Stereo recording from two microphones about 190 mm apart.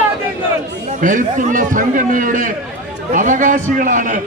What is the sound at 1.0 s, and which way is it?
A man's voice, 45° right (ahead or behind).